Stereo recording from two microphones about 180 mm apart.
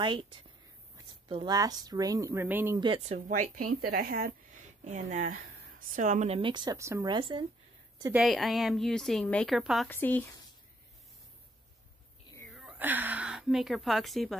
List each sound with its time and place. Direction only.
0.0 s a woman's voice: 25° right (ahead or behind); by 2.8 s 10° right (ahead or behind)
2.8 s a woman's voice: 30° right (ahead or behind); by 4.4 s 60° right (ahead or behind)
4.8 s speech: 45° right (ahead or behind); by 7.4 s 25° right (ahead or behind)
8.1 s a woman's voice: centre (ahead or behind)
9.8 s speech: 10° left (ahead or behind)
12.5 s speech: 5° right (ahead or behind)